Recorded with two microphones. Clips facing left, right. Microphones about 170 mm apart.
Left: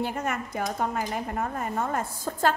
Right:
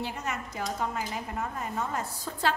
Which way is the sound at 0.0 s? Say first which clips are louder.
Left 5 dB; 50° left (ahead or behind).